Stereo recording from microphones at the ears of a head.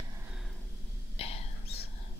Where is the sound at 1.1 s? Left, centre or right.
Left.